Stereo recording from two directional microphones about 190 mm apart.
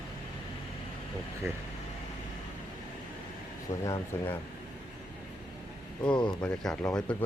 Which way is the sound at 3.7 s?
35° left (ahead or behind).